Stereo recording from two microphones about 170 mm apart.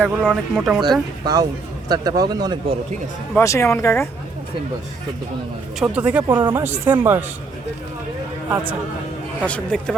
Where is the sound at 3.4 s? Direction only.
15° left (ahead or behind).